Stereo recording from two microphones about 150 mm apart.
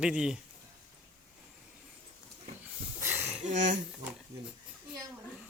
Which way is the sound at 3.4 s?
50° right (ahead or behind).